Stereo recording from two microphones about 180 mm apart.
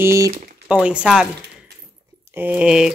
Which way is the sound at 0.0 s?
15° right (ahead or behind).